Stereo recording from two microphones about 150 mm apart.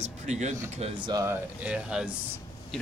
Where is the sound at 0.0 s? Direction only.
50° right (ahead or behind).